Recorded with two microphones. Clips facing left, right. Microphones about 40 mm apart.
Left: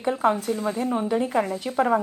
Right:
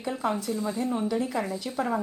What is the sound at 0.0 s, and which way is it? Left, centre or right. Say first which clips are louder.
Speech: left 7 dB; left.